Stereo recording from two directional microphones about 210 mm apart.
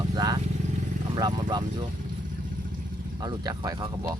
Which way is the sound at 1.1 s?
20° right (ahead or behind).